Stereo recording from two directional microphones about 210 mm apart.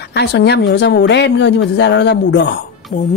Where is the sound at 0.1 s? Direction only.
50° left (ahead or behind).